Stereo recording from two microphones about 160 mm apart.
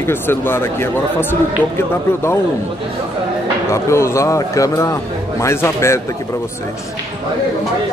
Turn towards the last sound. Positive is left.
turn(degrees=15)  # may be behind; listen again after turning